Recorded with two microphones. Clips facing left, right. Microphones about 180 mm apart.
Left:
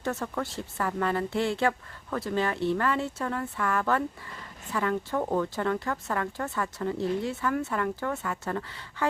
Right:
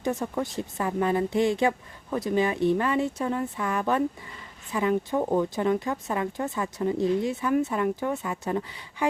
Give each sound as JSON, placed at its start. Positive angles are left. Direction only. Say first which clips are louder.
{"t": 0.0, "sound": "speech", "louder": "right 3 dB", "side_deg": -15}